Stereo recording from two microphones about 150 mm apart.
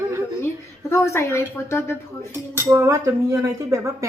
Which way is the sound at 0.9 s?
20° left (ahead or behind).